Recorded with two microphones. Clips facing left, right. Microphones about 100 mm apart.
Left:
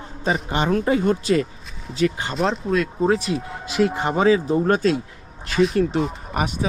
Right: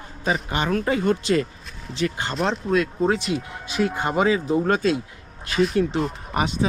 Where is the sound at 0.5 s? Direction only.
30° left (ahead or behind).